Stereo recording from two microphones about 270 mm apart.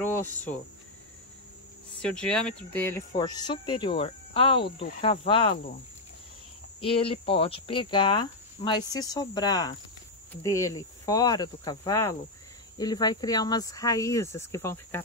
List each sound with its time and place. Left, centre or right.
0.0 s cricket: centre
2.0 s speech: centre
6.8 s speech: centre